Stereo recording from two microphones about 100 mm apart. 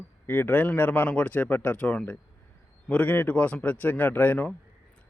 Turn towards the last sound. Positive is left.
turn(degrees=15)  # may be behind; listen again after turning